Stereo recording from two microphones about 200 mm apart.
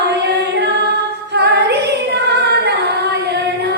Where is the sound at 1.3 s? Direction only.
55° right (ahead or behind).